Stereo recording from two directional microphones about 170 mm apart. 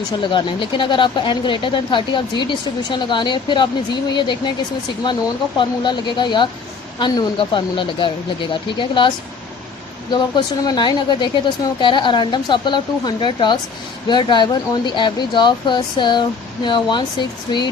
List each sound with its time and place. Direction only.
0.2 s speech: 30° left (ahead or behind)
5.5 s speech: 25° left (ahead or behind)